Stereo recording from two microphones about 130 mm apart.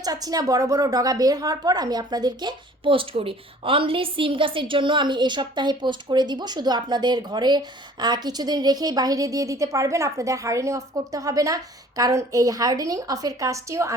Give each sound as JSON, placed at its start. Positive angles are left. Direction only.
{"t": 0.0, "sound": "a woman's voice", "side_deg": -30}